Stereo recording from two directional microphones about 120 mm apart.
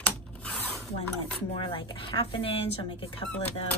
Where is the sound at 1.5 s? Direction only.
50° left (ahead or behind).